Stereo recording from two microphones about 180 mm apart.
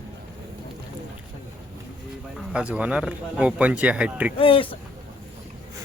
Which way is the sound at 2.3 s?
5° right (ahead or behind).